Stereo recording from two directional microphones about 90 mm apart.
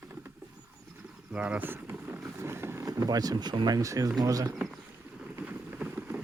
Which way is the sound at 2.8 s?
40° right (ahead or behind).